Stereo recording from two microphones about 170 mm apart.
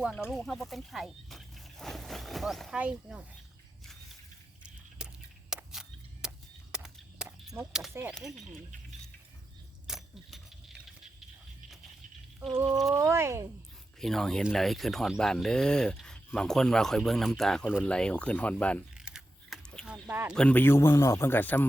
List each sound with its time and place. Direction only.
0.0 s speech: centre (ahead or behind)
5.0 s a sound: 5° right (ahead or behind)
7.9 s speech: 15° right (ahead or behind)
9.8 s keys jangling: centre (ahead or behind)
12.9 s speech: 15° right (ahead or behind)
14.0 s speech: centre (ahead or behind)
18.9 s crunch: 5° right (ahead or behind)
20.3 s speech: 5° left (ahead or behind)